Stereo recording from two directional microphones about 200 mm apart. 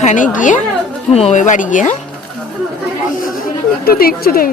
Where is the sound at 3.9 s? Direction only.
50° left (ahead or behind).